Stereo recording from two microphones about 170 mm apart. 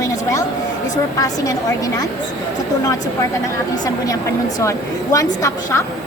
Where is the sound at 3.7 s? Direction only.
20° left (ahead or behind).